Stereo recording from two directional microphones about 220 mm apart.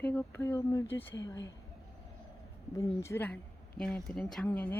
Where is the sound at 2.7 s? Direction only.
15° left (ahead or behind).